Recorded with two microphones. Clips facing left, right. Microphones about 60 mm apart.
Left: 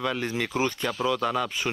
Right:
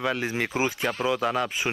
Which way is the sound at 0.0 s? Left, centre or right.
Centre.